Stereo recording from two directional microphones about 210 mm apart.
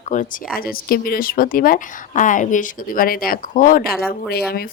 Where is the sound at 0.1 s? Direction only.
35° left (ahead or behind).